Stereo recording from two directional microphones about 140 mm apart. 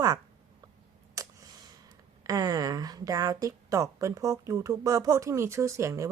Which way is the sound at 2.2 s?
25° right (ahead or behind).